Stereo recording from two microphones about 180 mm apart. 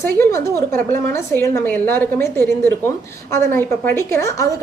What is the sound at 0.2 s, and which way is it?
A woman's voice, 15° left (ahead or behind).